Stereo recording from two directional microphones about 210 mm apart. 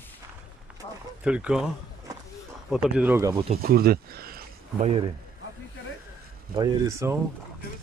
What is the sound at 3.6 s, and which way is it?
Speech, 45° right (ahead or behind).